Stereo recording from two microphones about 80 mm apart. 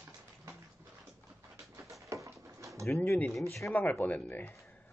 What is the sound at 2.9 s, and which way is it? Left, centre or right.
Speech, left.